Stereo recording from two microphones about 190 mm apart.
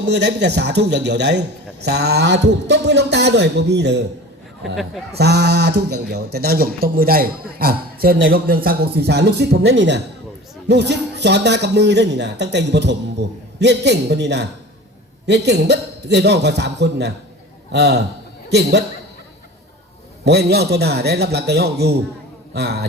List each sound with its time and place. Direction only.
0.0 s a man's voice: 65° right (ahead or behind)
4.6 s speech: centre (ahead or behind)
5.1 s a man's voice: 60° right (ahead or behind)
20.2 s a man's voice: 60° right (ahead or behind)